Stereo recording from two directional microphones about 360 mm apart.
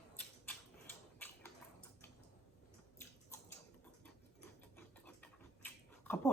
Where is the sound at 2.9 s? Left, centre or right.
Centre.